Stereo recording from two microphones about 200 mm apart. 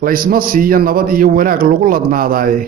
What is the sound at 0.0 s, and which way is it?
A man's voice, 45° right (ahead or behind).